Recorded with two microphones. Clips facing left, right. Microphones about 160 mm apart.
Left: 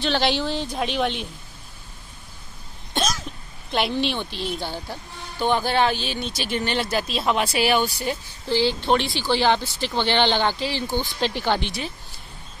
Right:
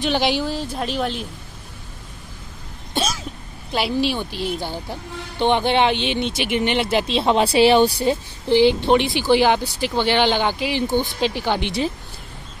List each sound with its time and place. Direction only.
0.0 s speech: 10° right (ahead or behind)
2.9 s cough: 5° right (ahead or behind)
3.7 s a woman's voice: 5° right (ahead or behind)